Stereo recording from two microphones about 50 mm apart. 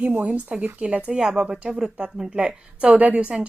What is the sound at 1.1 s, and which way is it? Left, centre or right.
A woman's voice, centre.